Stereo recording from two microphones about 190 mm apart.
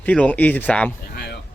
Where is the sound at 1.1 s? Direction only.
60° left (ahead or behind).